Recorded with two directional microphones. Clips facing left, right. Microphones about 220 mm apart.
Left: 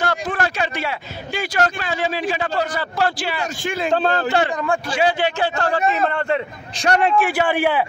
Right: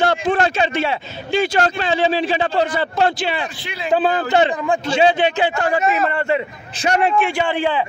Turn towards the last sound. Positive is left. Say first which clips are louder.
# left 1 dB
turn(degrees=10)  # may be behind; listen again after turning